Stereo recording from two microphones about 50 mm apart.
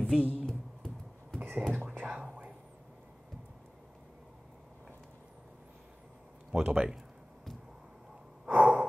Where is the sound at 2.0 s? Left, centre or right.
Right.